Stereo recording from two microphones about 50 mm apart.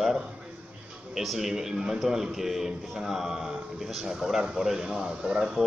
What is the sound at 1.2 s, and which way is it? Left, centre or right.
A man's voice, centre.